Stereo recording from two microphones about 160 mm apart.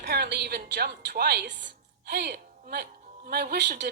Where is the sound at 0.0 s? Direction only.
90° right.